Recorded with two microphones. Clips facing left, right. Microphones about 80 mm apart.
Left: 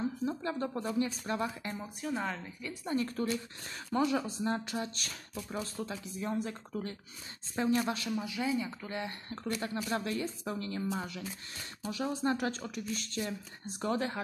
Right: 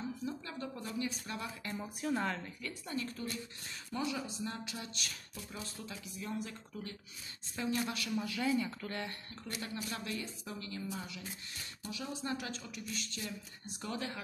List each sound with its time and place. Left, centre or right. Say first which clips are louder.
0.2 s speech: left 7 dB; left
1.8 s speech: right 2 dB; centre
2.9 s speech: left 8 dB; left
8.1 s speech: left 1 dB; centre
9.3 s speech: left 7 dB; left
11.9 s speech: left 8 dB; left